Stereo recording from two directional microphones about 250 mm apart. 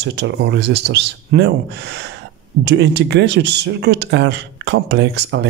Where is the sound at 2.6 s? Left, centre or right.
Right.